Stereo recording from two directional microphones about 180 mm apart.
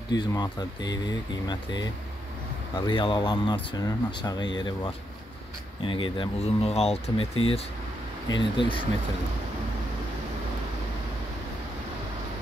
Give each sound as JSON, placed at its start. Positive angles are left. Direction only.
{"t": 0.1, "sound": "speech", "side_deg": 20}